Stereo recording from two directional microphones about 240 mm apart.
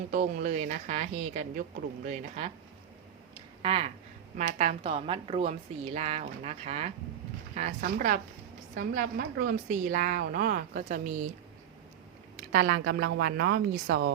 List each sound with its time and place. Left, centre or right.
0.1 s a woman's voice: right
3.6 s a woman's voice: right
12.5 s a woman's voice: right